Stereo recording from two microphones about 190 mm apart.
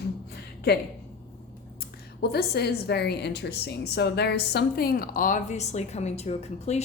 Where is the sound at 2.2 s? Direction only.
55° left (ahead or behind); by 6.8 s 35° left (ahead or behind).